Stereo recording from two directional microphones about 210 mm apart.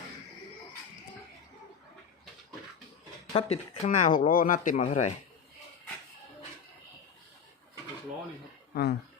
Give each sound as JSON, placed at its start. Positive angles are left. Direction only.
{"t": 3.3, "sound": "speech", "side_deg": 30}
{"t": 8.7, "sound": "speech", "side_deg": 45}